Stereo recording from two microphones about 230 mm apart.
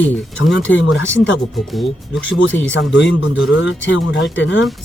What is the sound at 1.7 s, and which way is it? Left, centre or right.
Speech, centre.